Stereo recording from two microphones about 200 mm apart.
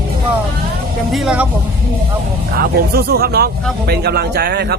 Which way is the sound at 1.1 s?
5° right (ahead or behind).